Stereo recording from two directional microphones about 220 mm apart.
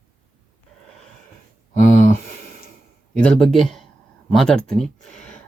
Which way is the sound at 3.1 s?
5° left (ahead or behind).